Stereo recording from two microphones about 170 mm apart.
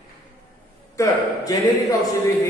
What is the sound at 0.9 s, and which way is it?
A man's voice, 20° left (ahead or behind).